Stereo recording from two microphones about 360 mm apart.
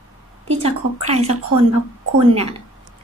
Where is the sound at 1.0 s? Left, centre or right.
Centre.